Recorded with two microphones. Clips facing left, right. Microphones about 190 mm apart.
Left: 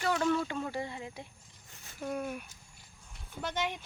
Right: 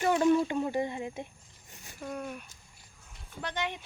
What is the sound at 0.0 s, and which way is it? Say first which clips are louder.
Speech: right 5 dB; 20° right (ahead or behind).